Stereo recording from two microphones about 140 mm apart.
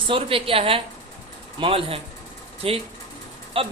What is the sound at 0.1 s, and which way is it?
A man's voice, 40° right (ahead or behind).